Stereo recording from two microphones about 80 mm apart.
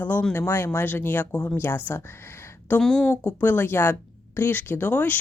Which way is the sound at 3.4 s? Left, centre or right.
Left.